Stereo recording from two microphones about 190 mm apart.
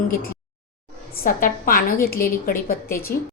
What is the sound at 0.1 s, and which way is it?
A woman's voice, 50° left (ahead or behind).